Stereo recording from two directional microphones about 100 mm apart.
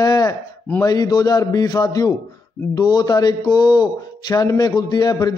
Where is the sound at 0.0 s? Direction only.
40° left (ahead or behind).